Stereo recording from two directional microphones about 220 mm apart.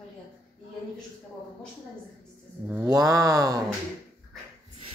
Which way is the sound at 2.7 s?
15° right (ahead or behind).